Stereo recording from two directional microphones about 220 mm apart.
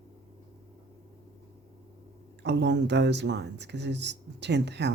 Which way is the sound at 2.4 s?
50° right (ahead or behind).